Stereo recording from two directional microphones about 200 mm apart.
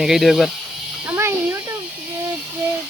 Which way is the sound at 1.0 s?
10° right (ahead or behind).